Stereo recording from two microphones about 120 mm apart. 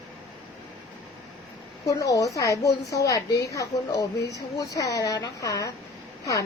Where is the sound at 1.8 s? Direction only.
30° left (ahead or behind).